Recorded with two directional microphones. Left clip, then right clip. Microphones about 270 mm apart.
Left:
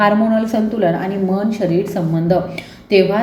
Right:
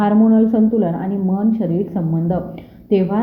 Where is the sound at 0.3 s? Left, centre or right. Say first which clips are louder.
Right 1 dB; centre.